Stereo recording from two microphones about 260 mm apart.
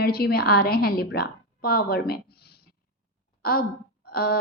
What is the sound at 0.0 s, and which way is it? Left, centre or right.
A woman's voice, left.